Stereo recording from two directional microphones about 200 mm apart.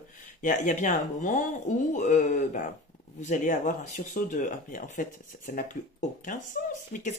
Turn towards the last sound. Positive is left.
turn(degrees=40)  # may be behind; listen again after turning